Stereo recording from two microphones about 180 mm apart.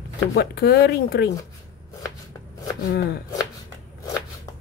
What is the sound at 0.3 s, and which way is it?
Speech, 65° left (ahead or behind).